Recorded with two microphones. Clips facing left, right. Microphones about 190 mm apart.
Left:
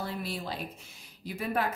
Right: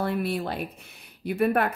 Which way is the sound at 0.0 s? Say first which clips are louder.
Right 9 dB; 60° right (ahead or behind).